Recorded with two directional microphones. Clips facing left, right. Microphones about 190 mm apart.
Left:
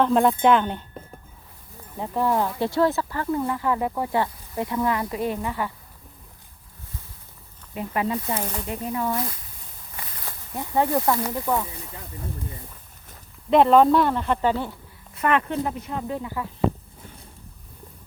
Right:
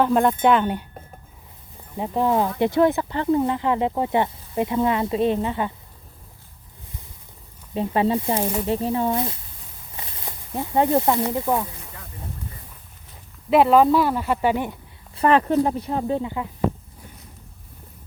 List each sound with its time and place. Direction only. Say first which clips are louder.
0.0 s speech: right 1 dB; centre (ahead or behind)
2.0 s speech: right 2 dB; 20° right (ahead or behind)
7.7 s speech: right 5 dB; 30° right (ahead or behind)
8.4 s speech: right 6 dB; 10° right (ahead or behind)
8.6 s speech: right 5 dB; 30° right (ahead or behind)
13.5 s speech: even; 5° right (ahead or behind)
15.1 s speech: right 5 dB; 30° right (ahead or behind)